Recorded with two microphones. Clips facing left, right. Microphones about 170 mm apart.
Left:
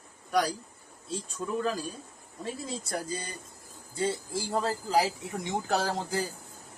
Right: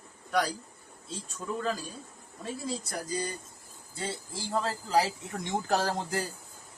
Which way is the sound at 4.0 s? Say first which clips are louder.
Left 7 dB; 15° left (ahead or behind).